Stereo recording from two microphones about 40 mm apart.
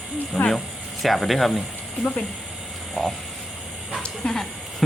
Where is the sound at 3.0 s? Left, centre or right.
Centre.